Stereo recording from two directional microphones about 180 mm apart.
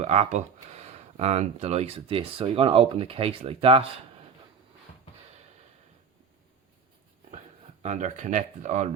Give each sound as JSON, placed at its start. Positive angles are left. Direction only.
{"t": 0.0, "sound": "speech", "side_deg": -40}
{"t": 7.3, "sound": "speech", "side_deg": -40}